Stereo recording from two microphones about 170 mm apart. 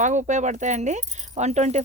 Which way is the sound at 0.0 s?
45° right (ahead or behind).